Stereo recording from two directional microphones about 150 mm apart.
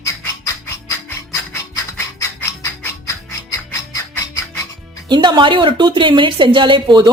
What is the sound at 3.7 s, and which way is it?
Music, 20° left (ahead or behind).